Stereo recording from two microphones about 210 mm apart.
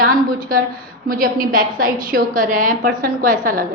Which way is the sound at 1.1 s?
40° right (ahead or behind).